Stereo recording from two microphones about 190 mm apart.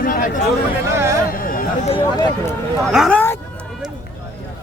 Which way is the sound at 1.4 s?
50° left (ahead or behind).